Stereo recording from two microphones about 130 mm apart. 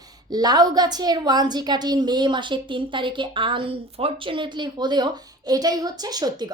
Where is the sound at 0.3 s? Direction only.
30° right (ahead or behind).